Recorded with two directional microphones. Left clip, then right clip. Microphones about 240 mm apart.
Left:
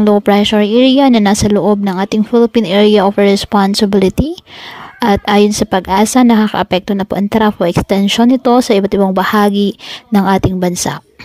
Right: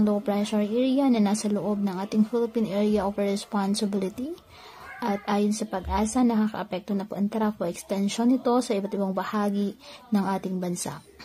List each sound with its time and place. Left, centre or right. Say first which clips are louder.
0.0 s a woman's voice: left 16 dB; left